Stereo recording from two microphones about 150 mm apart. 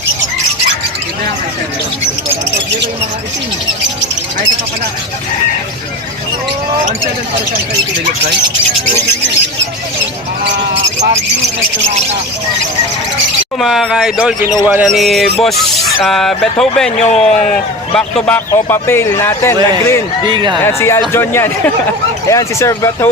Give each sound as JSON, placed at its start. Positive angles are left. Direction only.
{"t": 13.6, "sound": "a man's voice", "side_deg": 0}
{"t": 20.2, "sound": "speech", "side_deg": -30}
{"t": 20.7, "sound": "a man's voice", "side_deg": 15}